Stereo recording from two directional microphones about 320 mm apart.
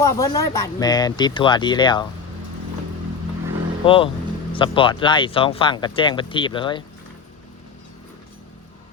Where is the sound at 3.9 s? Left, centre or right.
Centre.